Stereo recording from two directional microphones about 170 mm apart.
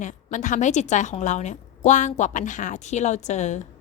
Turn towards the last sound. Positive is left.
turn(degrees=45)  # may be behind; listen again after turning